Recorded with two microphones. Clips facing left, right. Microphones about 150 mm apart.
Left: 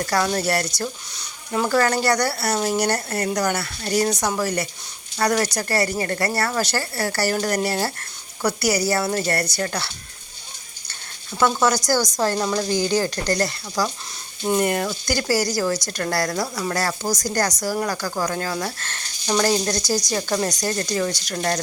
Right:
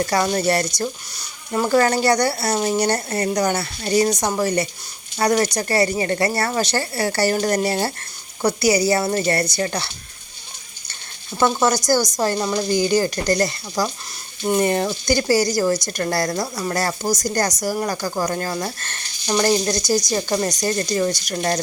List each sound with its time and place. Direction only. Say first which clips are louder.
0.1 s speech: left 1 dB; 10° right (ahead or behind)
1.1 s a woman's voice: right 2 dB; 5° right (ahead or behind)
11.3 s speech: right 1 dB; 15° right (ahead or behind)